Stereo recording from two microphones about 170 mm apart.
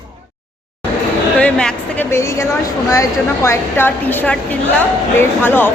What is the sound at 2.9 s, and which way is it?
A woman's voice, 15° left (ahead or behind).